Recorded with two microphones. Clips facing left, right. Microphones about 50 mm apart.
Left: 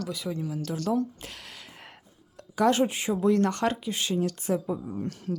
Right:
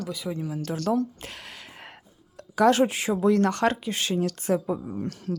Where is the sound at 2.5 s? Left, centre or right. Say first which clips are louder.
Right 3 dB; right.